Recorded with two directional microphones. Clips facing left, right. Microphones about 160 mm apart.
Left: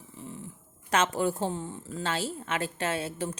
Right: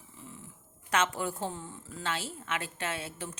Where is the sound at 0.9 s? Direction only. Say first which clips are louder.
Left 4 dB; 35° left (ahead or behind).